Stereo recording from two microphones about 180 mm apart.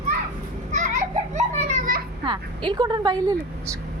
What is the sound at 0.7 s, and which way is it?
Children playing, 45° right (ahead or behind).